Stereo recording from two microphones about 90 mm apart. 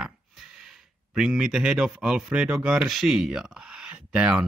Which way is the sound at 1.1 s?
5° right (ahead or behind).